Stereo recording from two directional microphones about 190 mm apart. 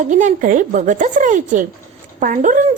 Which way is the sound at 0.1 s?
45° right (ahead or behind).